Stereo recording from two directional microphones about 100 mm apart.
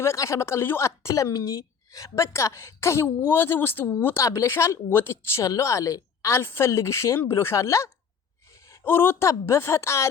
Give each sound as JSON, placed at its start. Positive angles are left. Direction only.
{"t": 0.0, "sound": "a woman's voice", "side_deg": 30}